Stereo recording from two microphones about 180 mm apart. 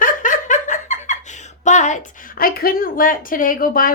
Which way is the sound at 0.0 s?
45° left (ahead or behind).